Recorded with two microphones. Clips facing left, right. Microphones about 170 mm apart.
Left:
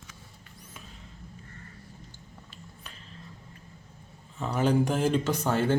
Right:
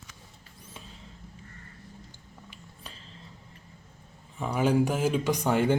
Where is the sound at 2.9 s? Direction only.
30° right (ahead or behind).